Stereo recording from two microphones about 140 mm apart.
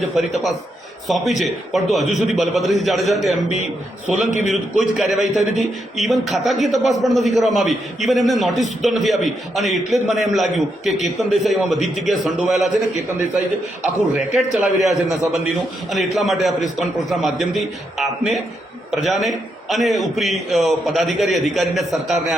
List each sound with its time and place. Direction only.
0.2 s a man's voice: centre (ahead or behind)
4.3 s a man's voice: 60° left (ahead or behind)
4.9 s a man's voice: centre (ahead or behind)
14.2 s a man's voice: 5° right (ahead or behind)